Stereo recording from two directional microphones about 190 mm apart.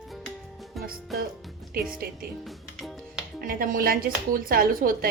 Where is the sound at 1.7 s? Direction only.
50° right (ahead or behind).